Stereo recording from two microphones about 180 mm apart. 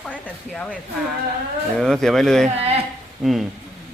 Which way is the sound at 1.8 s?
5° left (ahead or behind).